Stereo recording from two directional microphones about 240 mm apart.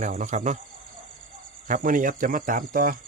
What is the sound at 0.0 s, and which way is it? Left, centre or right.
Speech, right.